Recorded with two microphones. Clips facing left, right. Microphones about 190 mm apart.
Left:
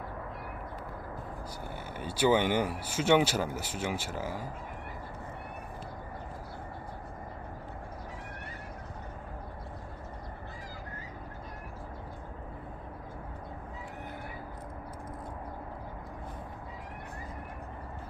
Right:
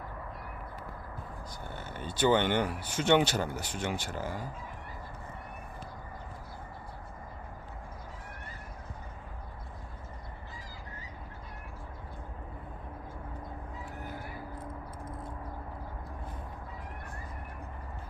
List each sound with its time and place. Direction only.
1.6 s speech: 10° left (ahead or behind)